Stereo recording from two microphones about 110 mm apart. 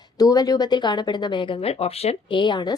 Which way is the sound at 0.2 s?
35° left (ahead or behind).